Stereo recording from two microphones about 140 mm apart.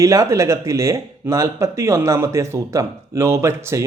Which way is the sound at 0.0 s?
20° right (ahead or behind).